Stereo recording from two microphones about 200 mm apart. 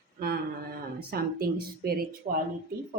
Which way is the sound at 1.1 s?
50° right (ahead or behind).